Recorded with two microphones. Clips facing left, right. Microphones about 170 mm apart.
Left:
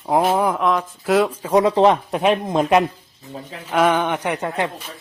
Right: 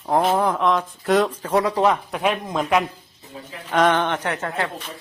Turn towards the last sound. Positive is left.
turn(degrees=15)  # may be behind; listen again after turning